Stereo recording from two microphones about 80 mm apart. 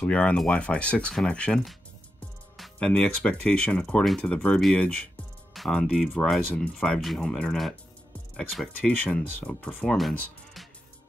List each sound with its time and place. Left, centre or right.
0.0 s speech: centre
2.8 s speech: centre
5.5 s speech: centre
8.9 s speech: centre